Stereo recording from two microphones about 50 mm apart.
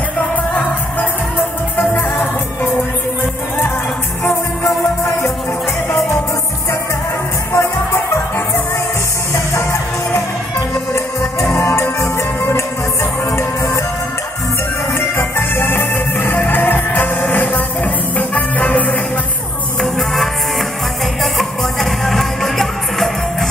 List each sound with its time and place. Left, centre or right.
1.8 s music: left
4.2 s music: left
7.5 s music: left
9.3 s music: left
11.5 s music: left
15.0 s music: left
19.8 s music: centre